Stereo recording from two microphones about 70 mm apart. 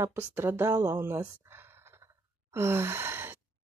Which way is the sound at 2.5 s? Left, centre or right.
Right.